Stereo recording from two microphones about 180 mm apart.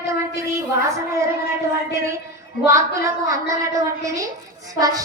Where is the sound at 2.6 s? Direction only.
15° right (ahead or behind).